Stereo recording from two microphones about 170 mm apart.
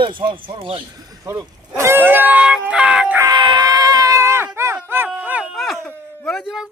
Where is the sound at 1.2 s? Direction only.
20° right (ahead or behind).